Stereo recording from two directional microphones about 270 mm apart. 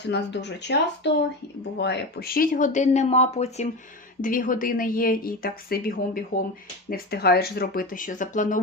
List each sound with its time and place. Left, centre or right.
0.1 s speech: left